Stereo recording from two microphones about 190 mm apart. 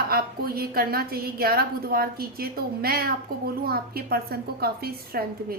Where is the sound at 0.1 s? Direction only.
55° right (ahead or behind).